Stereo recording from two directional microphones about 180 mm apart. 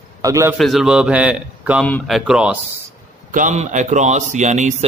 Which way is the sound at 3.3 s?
45° right (ahead or behind).